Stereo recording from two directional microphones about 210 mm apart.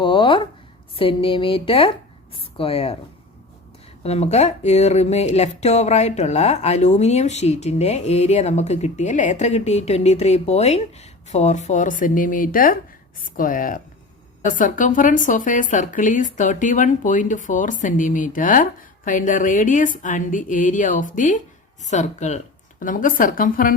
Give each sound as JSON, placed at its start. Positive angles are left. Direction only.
{"t": 0.0, "sound": "a sound", "side_deg": 20}
{"t": 0.9, "sound": "a woman's voice", "side_deg": 25}
{"t": 4.0, "sound": "speech", "side_deg": 30}